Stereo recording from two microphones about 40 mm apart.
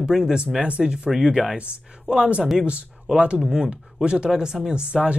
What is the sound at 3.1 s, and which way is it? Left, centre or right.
Speech, right.